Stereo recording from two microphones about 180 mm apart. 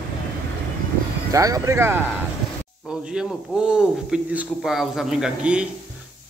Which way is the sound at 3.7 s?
5° right (ahead or behind).